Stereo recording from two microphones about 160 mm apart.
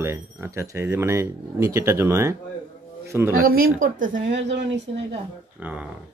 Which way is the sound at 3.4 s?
65° right (ahead or behind).